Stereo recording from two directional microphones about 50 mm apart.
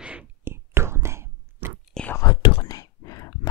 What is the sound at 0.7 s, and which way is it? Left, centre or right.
Whispering, right.